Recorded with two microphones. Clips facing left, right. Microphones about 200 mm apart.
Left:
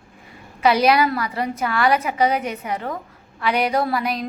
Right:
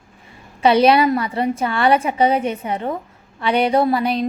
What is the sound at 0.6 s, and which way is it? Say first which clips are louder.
A woman's voice: right 3 dB; 25° right (ahead or behind).